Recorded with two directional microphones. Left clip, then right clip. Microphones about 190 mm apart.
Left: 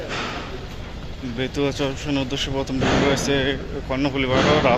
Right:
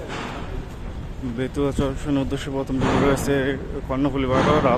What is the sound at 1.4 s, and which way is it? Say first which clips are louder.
Speech: left 1 dB; 15° right (ahead or behind).